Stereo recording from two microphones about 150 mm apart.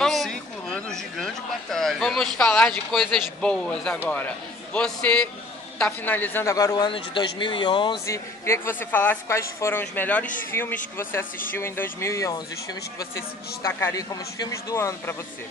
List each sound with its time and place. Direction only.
0.0 s a woman's voice: centre (ahead or behind); by 8.0 s 30° left (ahead or behind)
8.1 s a woman's voice: 15° left (ahead or behind)
13.6 s speech: 15° left (ahead or behind)